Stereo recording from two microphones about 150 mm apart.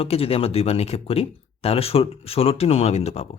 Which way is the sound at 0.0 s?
40° left (ahead or behind).